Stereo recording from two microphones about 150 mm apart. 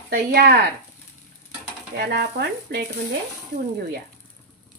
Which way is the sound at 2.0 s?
90° right.